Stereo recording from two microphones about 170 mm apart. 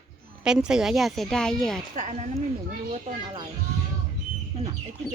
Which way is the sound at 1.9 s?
45° right (ahead or behind).